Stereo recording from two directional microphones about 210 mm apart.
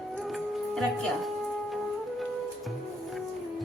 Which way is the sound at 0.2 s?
Centre (ahead or behind).